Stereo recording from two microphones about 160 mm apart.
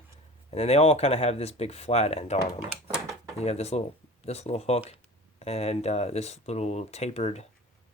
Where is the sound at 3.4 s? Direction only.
40° left (ahead or behind).